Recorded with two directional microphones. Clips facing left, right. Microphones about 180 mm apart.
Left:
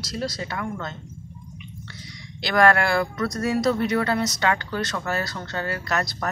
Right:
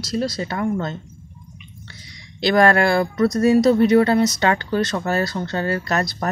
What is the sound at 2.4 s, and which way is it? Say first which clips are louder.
Speech: right 4 dB; 25° right (ahead or behind).